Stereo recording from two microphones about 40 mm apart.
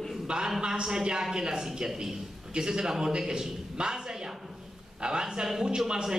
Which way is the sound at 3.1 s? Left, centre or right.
Centre.